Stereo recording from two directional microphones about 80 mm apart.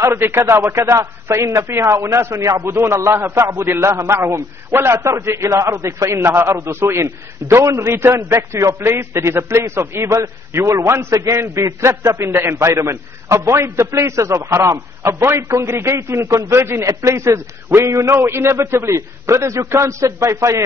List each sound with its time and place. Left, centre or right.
0.0 s a man's voice: right